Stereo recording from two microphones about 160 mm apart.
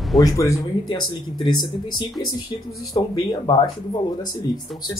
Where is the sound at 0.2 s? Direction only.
20° left (ahead or behind).